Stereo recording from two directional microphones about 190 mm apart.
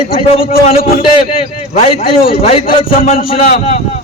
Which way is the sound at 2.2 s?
30° left (ahead or behind).